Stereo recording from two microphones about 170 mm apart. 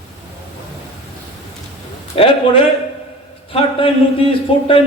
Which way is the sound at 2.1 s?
35° left (ahead or behind).